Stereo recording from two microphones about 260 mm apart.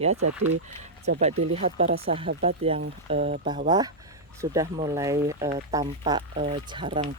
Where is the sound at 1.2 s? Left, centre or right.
Right.